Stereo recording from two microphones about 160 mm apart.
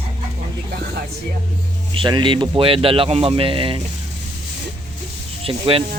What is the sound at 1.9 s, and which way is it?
Speech, 30° right (ahead or behind).